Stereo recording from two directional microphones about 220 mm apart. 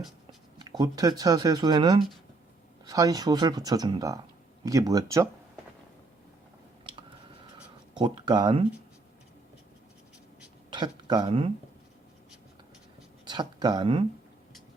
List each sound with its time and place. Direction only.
0.6 s speech: 20° right (ahead or behind)
7.9 s speech: 20° right (ahead or behind)
10.7 s speech: 20° right (ahead or behind)
13.2 s speech: 20° right (ahead or behind)